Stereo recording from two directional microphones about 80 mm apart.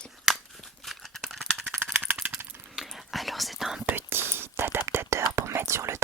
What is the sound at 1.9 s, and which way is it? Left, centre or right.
Rattle, right.